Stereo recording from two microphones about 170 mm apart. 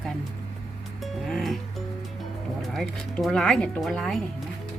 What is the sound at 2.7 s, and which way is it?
Speech, centre (ahead or behind).